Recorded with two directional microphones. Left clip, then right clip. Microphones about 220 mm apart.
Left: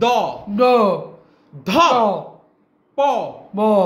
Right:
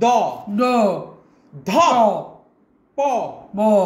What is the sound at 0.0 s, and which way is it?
A man's voice, 20° left (ahead or behind).